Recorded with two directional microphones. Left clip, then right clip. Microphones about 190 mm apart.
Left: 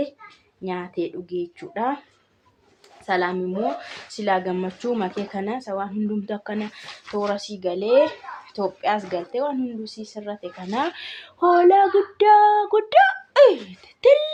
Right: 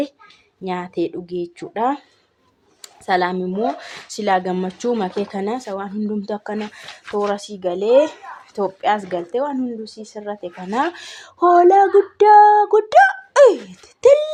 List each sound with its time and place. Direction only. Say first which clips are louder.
0.6 s speech: right 4 dB; 55° right (ahead or behind)
3.1 s speech: right 4 dB; 55° right (ahead or behind)